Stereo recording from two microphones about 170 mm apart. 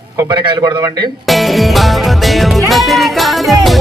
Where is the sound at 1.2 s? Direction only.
Centre (ahead or behind).